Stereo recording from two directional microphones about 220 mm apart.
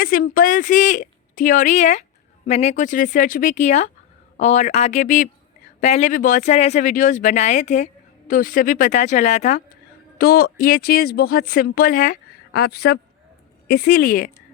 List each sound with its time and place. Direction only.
0.0 s speech: 40° left (ahead or behind)
10.2 s speech: 45° left (ahead or behind)